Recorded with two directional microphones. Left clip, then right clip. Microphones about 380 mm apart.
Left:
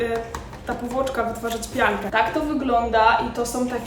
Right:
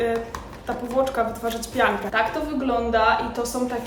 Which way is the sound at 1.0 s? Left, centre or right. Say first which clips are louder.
Right 1 dB; centre.